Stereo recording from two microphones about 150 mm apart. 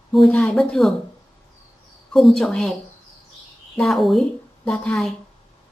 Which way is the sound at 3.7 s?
Centre (ahead or behind).